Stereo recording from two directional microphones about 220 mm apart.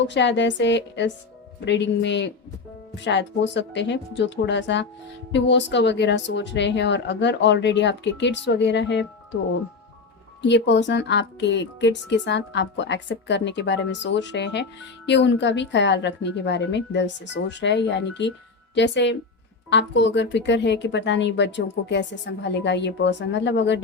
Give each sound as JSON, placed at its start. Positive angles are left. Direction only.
{"t": 0.0, "sound": "speech", "side_deg": 55}
{"t": 10.4, "sound": "speech", "side_deg": 55}